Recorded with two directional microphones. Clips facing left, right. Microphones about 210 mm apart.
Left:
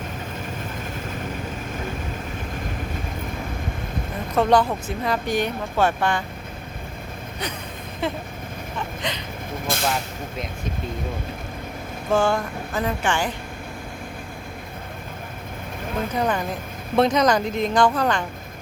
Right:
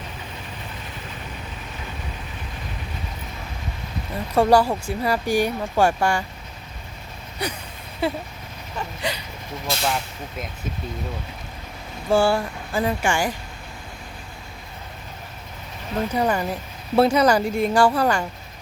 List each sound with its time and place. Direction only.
4.4 s speech: 10° right (ahead or behind)
8.0 s speech: 10° right (ahead or behind)
9.7 s vehicle: 50° left (ahead or behind)
12.1 s speech: 10° right (ahead or behind)
16.1 s speech: 10° right (ahead or behind)